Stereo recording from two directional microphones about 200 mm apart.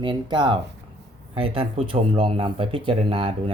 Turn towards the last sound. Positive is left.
turn(degrees=-30)  # may be behind; listen again after turning